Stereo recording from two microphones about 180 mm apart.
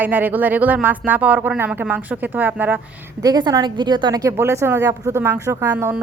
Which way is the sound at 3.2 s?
20° right (ahead or behind).